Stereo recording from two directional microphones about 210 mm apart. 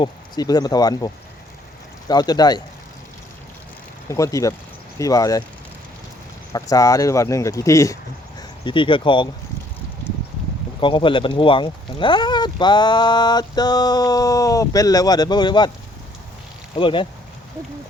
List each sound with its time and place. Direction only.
0.0 s speech: 20° left (ahead or behind)
4.1 s speech: 15° left (ahead or behind)
6.5 s speech: 15° left (ahead or behind)
10.8 s speech: 25° left (ahead or behind)
16.7 s speech: 25° left (ahead or behind)